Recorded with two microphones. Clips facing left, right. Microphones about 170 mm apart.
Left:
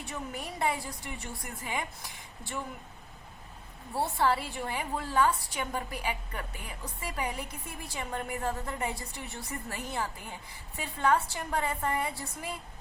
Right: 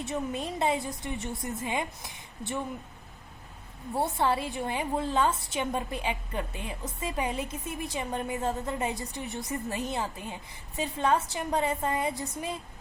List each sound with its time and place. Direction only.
0.0 s a woman's voice: 20° right (ahead or behind)
3.9 s a woman's voice: 20° right (ahead or behind)